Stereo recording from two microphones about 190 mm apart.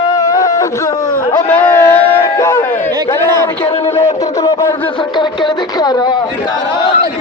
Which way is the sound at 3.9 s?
15° left (ahead or behind).